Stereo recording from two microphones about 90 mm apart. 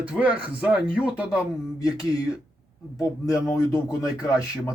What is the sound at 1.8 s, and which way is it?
Speech, 40° left (ahead or behind).